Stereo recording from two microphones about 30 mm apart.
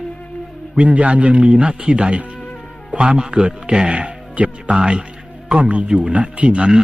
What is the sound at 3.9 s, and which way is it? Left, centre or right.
Speech, right.